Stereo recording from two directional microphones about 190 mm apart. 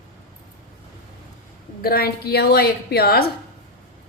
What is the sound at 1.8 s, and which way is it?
A woman's voice, 55° left (ahead or behind).